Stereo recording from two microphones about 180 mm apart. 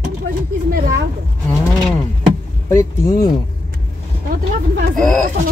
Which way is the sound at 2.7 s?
15° left (ahead or behind).